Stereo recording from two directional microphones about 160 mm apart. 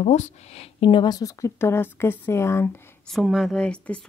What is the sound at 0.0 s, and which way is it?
Speech, 45° left (ahead or behind).